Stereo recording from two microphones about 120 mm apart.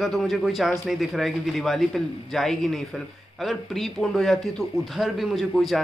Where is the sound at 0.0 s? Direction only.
Centre (ahead or behind).